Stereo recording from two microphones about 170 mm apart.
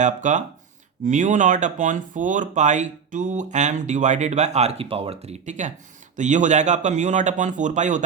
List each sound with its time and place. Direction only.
0.0 s speech: 45° right (ahead or behind)